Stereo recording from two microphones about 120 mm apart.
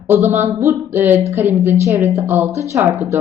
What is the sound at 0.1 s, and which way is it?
A woman's voice, 20° right (ahead or behind).